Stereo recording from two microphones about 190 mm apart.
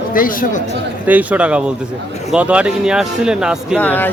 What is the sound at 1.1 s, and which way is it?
A man's voice, 10° right (ahead or behind).